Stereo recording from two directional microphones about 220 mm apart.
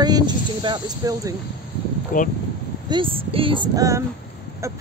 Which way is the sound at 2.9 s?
25° right (ahead or behind).